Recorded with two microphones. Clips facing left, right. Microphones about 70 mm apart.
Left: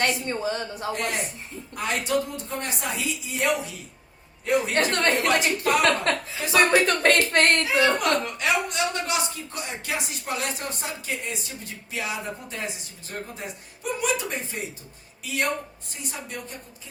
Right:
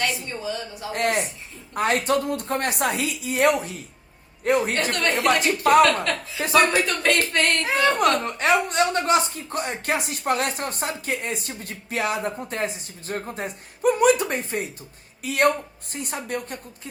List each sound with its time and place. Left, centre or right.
0.0 s a man's voice: left
0.9 s a woman's voice: right
6.8 s speech: left
7.6 s a woman's voice: right